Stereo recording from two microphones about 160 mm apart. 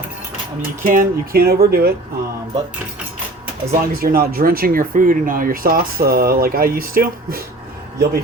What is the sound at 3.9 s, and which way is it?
Speech, 65° right (ahead or behind).